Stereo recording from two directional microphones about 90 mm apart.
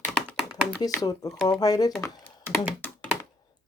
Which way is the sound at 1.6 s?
45° left (ahead or behind).